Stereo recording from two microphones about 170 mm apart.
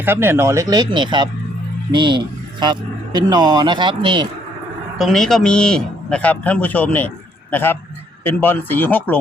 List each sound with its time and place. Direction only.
0.0 s speech: 15° right (ahead or behind); by 4.3 s 30° right (ahead or behind)
4.9 s a man's voice: centre (ahead or behind)